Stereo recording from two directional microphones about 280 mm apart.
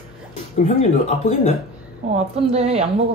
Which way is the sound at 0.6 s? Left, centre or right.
Left.